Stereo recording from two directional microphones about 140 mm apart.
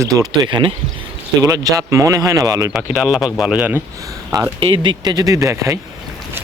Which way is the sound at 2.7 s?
5° right (ahead or behind).